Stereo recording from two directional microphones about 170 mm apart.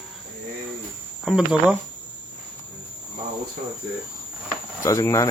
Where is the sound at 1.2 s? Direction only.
5° right (ahead or behind).